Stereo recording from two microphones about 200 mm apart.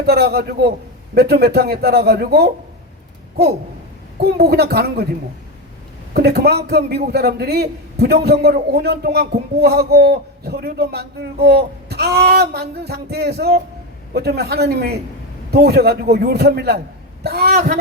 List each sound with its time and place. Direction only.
0.0 s a man's voice: 50° right (ahead or behind)
4.2 s a man's voice: 50° right (ahead or behind)
6.1 s a man's voice: 55° right (ahead or behind)